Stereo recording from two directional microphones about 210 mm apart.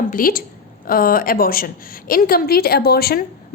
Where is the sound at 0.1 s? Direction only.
45° left (ahead or behind).